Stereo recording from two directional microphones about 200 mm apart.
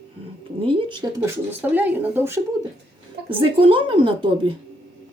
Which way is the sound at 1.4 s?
10° right (ahead or behind).